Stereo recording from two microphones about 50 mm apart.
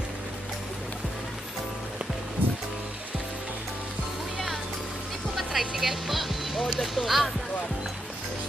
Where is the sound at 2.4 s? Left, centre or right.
Right.